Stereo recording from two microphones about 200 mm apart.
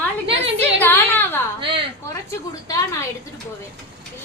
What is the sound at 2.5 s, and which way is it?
Speech, 15° left (ahead or behind).